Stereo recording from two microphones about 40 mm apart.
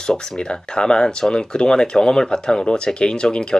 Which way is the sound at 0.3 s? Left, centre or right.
Left.